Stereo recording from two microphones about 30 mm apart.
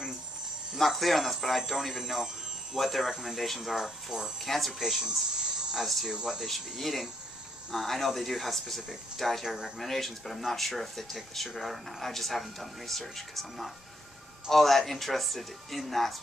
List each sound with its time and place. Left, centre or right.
0.7 s speech: centre
3.8 s speech: centre
4.4 s speech: centre
5.0 s a sound: right
5.8 s speech: centre